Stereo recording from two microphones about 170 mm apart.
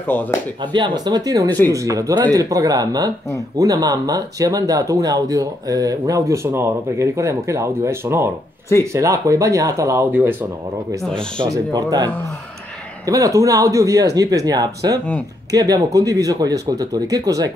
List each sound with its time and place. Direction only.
0.0 s speech: 10° left (ahead or behind)
0.7 s speech: 25° right (ahead or behind)
11.3 s speech: 25° right (ahead or behind)